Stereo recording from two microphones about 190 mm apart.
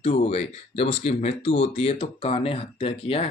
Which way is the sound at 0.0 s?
35° left (ahead or behind).